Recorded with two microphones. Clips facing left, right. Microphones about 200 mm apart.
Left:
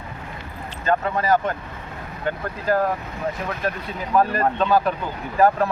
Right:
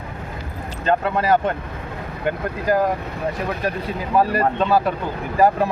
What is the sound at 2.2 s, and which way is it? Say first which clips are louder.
Speech: right 3 dB; 15° right (ahead or behind).